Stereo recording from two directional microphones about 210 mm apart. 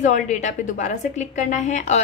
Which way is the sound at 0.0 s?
35° left (ahead or behind).